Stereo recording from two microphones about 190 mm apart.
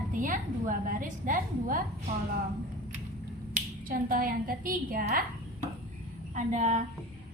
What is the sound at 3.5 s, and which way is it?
Speech, 50° right (ahead or behind).